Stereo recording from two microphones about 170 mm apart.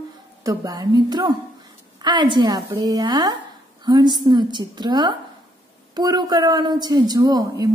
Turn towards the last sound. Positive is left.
turn(degrees=-25)  # may be behind; listen again after turning